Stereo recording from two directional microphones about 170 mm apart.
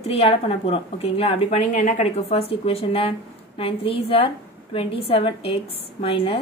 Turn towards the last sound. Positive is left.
turn(degrees=35)  # may be behind; listen again after turning